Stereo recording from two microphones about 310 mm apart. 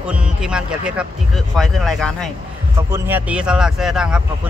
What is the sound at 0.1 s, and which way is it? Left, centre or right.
A man's voice, centre.